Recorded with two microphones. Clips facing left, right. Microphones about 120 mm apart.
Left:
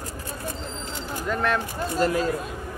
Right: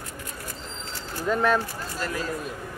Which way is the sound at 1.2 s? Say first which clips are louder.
Right 3 dB; centre (ahead or behind).